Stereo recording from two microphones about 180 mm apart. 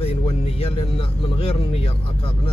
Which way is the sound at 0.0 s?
35° left (ahead or behind).